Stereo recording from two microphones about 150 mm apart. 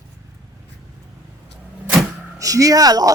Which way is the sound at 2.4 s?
25° right (ahead or behind).